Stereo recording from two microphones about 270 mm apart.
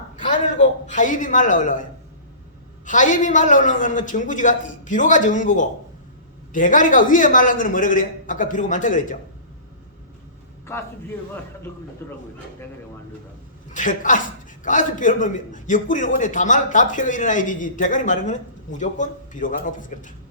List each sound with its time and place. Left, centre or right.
0.3 s a man's voice: left
2.8 s a man's voice: left
13.7 s a man's voice: left